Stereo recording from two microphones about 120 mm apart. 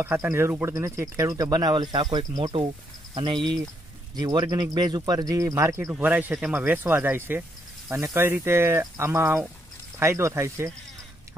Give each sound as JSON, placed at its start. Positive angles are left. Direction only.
{"t": 0.0, "sound": "speech", "side_deg": -20}
{"t": 5.9, "sound": "speech", "side_deg": -15}